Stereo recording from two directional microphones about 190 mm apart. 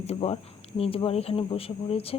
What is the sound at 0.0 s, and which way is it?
A woman's voice, 30° left (ahead or behind).